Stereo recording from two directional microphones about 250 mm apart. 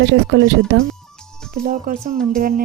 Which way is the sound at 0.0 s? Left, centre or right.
Right.